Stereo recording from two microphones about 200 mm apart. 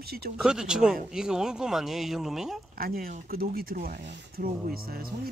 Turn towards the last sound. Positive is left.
turn(degrees=-50)  # may be behind; listen again after turning